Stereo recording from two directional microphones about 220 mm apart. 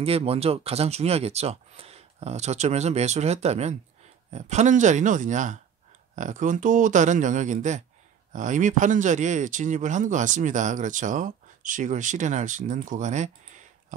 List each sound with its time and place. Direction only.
0.0 s speech: 25° right (ahead or behind)